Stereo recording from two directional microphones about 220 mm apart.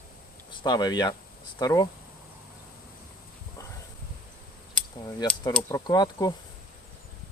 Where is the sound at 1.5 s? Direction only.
15° left (ahead or behind).